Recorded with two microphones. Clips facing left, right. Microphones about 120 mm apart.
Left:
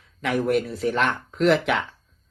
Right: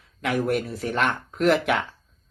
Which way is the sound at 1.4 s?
Centre (ahead or behind).